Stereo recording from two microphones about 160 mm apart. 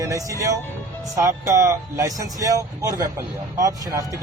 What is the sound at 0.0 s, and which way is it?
Speech, 20° right (ahead or behind).